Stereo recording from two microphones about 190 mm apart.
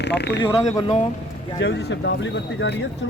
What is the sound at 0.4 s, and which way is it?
Speech, 20° left (ahead or behind).